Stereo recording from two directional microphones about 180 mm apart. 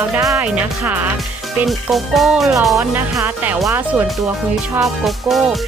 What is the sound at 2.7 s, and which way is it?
Speech, 15° right (ahead or behind).